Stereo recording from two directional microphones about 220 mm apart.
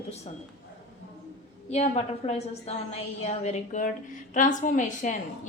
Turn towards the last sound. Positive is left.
turn(degrees=35)  # may be behind; listen again after turning